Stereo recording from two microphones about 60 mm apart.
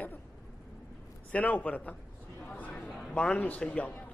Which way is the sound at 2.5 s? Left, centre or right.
Left.